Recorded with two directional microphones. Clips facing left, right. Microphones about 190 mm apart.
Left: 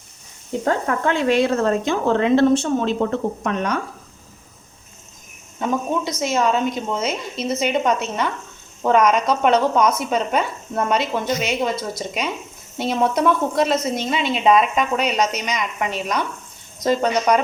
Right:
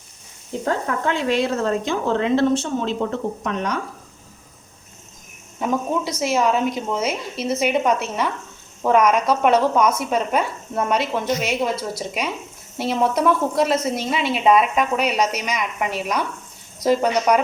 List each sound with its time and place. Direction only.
0.6 s speech: 55° left (ahead or behind)
5.5 s a woman's voice: 5° right (ahead or behind)